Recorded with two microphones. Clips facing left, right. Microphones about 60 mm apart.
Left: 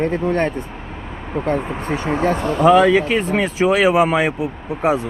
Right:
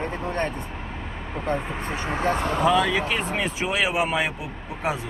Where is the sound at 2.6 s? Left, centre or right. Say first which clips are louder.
Left 11 dB; left.